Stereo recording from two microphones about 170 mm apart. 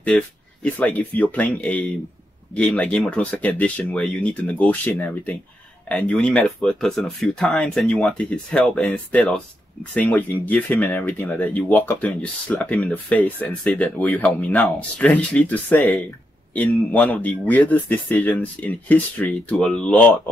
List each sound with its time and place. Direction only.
0.0 s speech: 5° left (ahead or behind)